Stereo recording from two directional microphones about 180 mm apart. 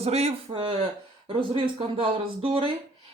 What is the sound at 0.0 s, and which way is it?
Speech, 35° right (ahead or behind).